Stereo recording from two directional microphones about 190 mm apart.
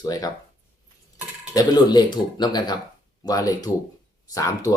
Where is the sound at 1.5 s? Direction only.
20° left (ahead or behind).